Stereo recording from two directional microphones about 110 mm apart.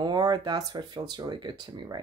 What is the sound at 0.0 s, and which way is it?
Speech, 40° right (ahead or behind).